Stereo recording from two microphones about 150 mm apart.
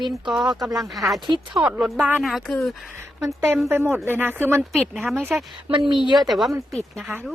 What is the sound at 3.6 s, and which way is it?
Speech, 15° right (ahead or behind).